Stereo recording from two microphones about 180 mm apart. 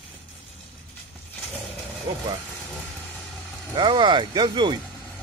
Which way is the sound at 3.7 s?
25° right (ahead or behind).